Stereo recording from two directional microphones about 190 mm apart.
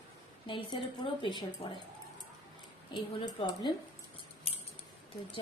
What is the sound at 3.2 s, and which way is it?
Speech, 25° left (ahead or behind).